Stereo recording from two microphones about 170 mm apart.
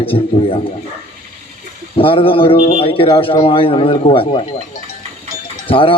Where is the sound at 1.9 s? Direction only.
30° left (ahead or behind).